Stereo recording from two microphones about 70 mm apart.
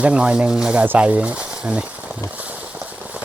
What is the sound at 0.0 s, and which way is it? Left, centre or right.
Speech, centre.